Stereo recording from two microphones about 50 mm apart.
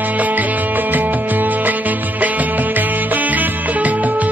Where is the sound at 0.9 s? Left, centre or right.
Right.